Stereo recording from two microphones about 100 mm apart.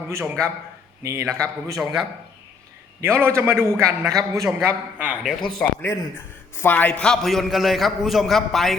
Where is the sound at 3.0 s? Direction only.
25° right (ahead or behind).